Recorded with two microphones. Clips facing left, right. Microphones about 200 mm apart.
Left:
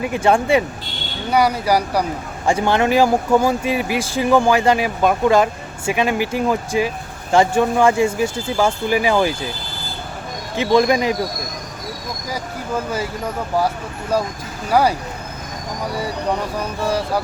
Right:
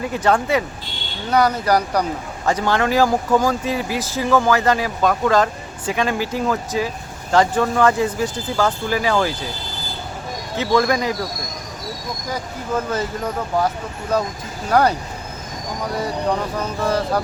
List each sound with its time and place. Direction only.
0.0 s speech: 10° left (ahead or behind)
0.3 s speech: 25° left (ahead or behind)
1.3 s speech: 10° left (ahead or behind)
2.6 s speech: 20° left (ahead or behind)
10.6 s speech: 20° left (ahead or behind)
12.3 s speech: 10° left (ahead or behind)
14.1 s speech: 10° left (ahead or behind)
16.6 s speech: 10° left (ahead or behind)